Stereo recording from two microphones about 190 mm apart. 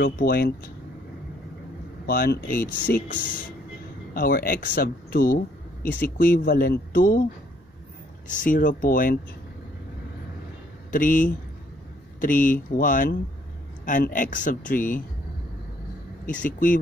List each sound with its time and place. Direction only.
0.0 s speech: 55° left (ahead or behind)
2.0 s speech: 55° left (ahead or behind)
8.3 s speech: 45° left (ahead or behind)
10.9 s speech: 45° left (ahead or behind)
16.5 s speech: 45° left (ahead or behind)